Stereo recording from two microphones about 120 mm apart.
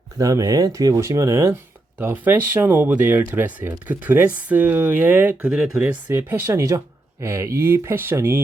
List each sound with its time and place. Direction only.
0.2 s speech: 30° right (ahead or behind); by 5.9 s 5° right (ahead or behind)
6.1 s speech: 20° right (ahead or behind)